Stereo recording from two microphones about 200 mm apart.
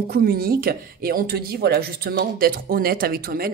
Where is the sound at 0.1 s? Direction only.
50° right (ahead or behind).